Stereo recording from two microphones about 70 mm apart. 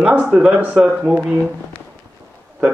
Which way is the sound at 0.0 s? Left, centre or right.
Centre.